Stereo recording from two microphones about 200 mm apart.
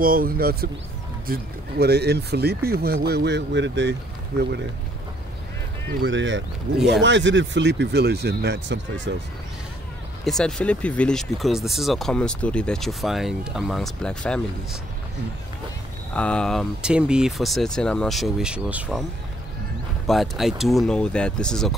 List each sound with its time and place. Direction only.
0.0 s speech: 45° right (ahead or behind); by 3.9 s 60° right (ahead or behind)
5.9 s speech: 65° right (ahead or behind)
10.2 s speech: 5° left (ahead or behind)
16.1 s speech: 5° left (ahead or behind)
20.1 s speech: centre (ahead or behind)